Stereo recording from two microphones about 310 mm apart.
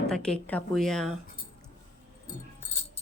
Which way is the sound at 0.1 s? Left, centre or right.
Centre.